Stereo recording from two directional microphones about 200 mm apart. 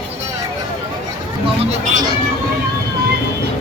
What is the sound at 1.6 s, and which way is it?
Speech, 35° right (ahead or behind).